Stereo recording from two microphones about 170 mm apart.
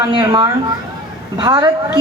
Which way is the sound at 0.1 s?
30° right (ahead or behind).